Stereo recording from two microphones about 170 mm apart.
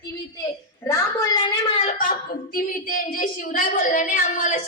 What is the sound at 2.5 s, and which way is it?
A woman's voice, 55° left (ahead or behind).